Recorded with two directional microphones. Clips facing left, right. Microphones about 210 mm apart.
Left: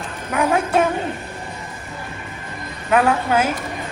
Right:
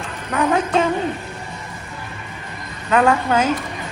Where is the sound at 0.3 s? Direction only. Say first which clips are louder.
Even; 5° left (ahead or behind).